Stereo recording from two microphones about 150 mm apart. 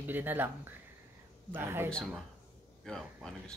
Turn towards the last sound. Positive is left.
turn(degrees=5)  # may be behind; listen again after turning